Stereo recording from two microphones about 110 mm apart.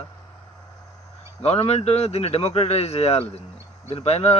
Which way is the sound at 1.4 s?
70° left (ahead or behind).